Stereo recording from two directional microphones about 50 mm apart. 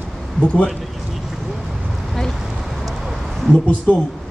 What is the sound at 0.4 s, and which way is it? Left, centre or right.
Speech, left.